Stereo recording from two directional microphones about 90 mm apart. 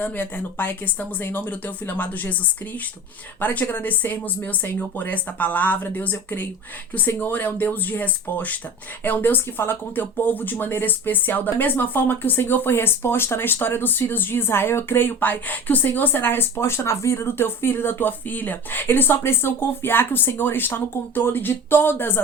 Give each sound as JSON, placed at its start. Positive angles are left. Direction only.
{"t": 0.0, "sound": "speech", "side_deg": 20}
{"t": 3.4, "sound": "speech", "side_deg": 20}